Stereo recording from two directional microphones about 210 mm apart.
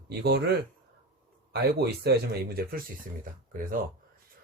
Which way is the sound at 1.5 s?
50° right (ahead or behind).